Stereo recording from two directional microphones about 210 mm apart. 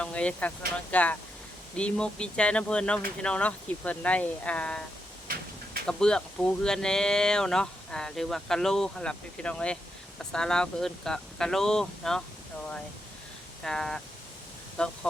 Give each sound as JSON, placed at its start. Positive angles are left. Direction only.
{"t": 0.0, "sound": "speech", "side_deg": 5}
{"t": 5.3, "sound": "a sound", "side_deg": -45}
{"t": 5.9, "sound": "speech", "side_deg": 5}
{"t": 13.7, "sound": "speech", "side_deg": 5}